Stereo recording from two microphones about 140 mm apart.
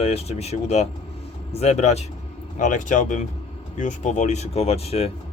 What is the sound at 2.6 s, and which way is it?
Speech, 65° left (ahead or behind).